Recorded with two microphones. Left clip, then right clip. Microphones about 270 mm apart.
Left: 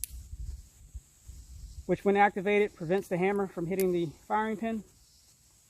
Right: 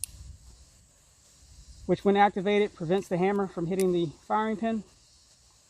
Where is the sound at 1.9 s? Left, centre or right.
Right.